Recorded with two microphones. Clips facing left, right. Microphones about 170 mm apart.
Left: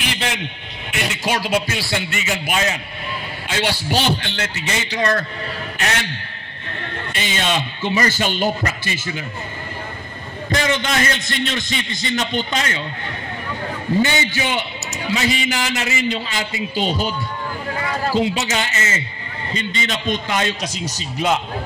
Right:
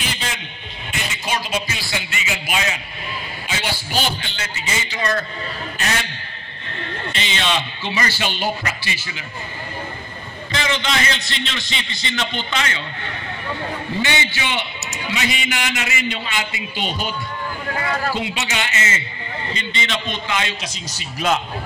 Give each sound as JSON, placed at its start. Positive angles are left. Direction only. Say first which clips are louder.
{"t": 0.0, "sound": "a sound", "louder": "left 4 dB", "side_deg": 65}
{"t": 0.9, "sound": "a man's voice", "louder": "left 4 dB", "side_deg": 65}
{"t": 3.4, "sound": "a man's voice", "louder": "left 6 dB", "side_deg": 65}
{"t": 7.1, "sound": "a man's voice", "louder": "left 1 dB", "side_deg": 50}
{"t": 10.5, "sound": "a man's voice", "louder": "left 3 dB", "side_deg": 45}
{"t": 14.0, "sound": "a man's voice", "louder": "left 3 dB", "side_deg": 40}
{"t": 18.1, "sound": "a man's voice", "louder": "left 5 dB", "side_deg": 40}